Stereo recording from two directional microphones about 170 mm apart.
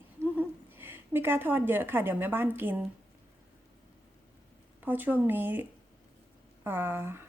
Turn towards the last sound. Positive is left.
turn(degrees=-10)  # may be behind; listen again after turning